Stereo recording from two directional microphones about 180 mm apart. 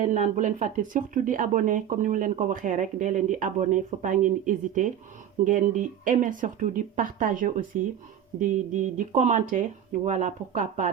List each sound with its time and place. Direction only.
0.0 s speech: 45° right (ahead or behind)